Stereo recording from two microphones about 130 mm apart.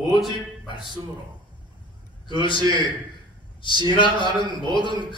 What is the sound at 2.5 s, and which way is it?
Speech, 35° right (ahead or behind).